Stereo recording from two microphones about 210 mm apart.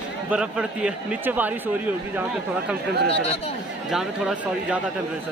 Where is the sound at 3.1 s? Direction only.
30° left (ahead or behind).